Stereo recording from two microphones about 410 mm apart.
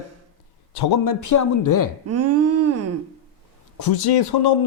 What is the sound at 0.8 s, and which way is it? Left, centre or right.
Speech, left.